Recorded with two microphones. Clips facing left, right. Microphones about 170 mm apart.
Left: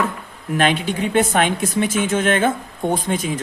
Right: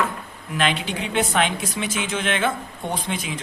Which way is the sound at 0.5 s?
50° left (ahead or behind).